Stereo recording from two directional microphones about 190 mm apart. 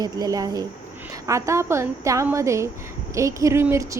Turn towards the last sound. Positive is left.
turn(degrees=-15)  # may be behind; listen again after turning